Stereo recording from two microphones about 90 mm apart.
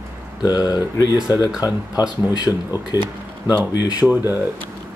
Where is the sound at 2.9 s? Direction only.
30° right (ahead or behind).